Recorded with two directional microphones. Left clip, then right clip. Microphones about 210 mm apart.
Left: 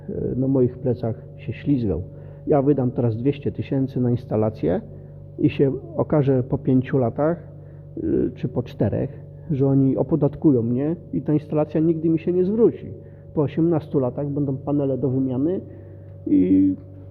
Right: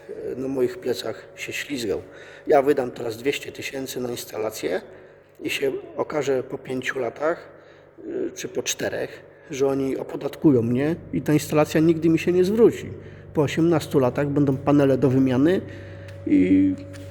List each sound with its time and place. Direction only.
0.6 s speech: 5° right (ahead or behind)
8.4 s speech: 5° right (ahead or behind)
14.3 s a man's voice: 45° right (ahead or behind)
15.1 s a man's voice: 15° right (ahead or behind)
16.3 s speech: 5° left (ahead or behind)